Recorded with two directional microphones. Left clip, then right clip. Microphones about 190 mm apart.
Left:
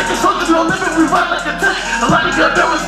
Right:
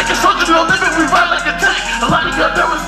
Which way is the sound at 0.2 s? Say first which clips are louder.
Right 2 dB; 25° right (ahead or behind).